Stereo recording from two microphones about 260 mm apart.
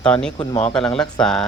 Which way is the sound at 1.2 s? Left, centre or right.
Centre.